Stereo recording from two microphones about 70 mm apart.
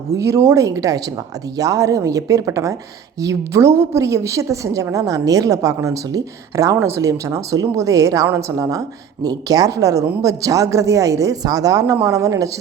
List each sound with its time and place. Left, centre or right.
0.1 s a woman's voice: right
6.7 s a woman's voice: right
9.2 s a woman's voice: right
11.4 s a woman's voice: right